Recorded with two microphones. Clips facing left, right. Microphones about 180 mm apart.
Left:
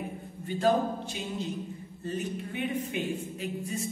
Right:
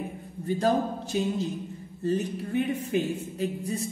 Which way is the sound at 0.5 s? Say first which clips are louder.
Right 1 dB; 40° right (ahead or behind).